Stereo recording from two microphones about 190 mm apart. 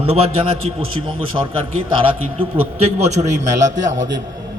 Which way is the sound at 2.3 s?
30° right (ahead or behind).